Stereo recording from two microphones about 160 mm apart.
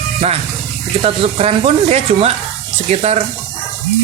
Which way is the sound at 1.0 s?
40° right (ahead or behind).